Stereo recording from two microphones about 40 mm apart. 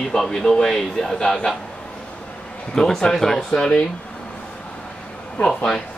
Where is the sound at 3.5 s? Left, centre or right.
Left.